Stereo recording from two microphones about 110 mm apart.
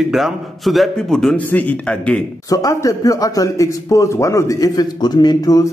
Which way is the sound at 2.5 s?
30° left (ahead or behind).